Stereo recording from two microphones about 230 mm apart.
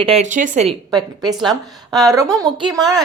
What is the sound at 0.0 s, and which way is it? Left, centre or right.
Speech, right.